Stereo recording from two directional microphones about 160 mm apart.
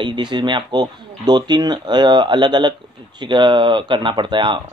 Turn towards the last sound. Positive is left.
turn(degrees=-30)  # may be behind; listen again after turning